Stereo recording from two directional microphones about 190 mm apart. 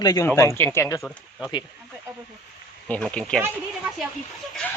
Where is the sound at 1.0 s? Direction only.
Centre (ahead or behind).